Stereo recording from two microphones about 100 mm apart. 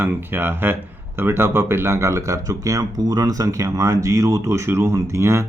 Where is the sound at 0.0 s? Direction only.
20° right (ahead or behind).